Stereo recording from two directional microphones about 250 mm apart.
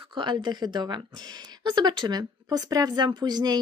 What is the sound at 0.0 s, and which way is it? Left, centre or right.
A woman's voice, centre.